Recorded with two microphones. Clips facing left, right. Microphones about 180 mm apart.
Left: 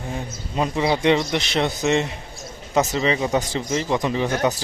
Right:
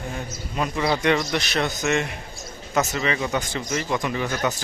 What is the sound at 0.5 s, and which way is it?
Speech, 25° left (ahead or behind).